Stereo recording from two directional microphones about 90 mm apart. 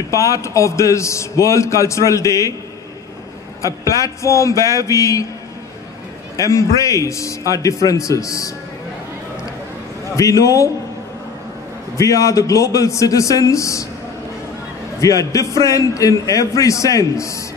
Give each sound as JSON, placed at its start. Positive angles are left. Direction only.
{"t": 0.1, "sound": "a man's voice", "side_deg": 35}
{"t": 3.6, "sound": "a man's voice", "side_deg": 35}
{"t": 6.3, "sound": "a man's voice", "side_deg": 35}
{"t": 10.1, "sound": "a man's voice", "side_deg": 40}
{"t": 12.0, "sound": "a man's voice", "side_deg": 35}
{"t": 15.0, "sound": "a man's voice", "side_deg": 40}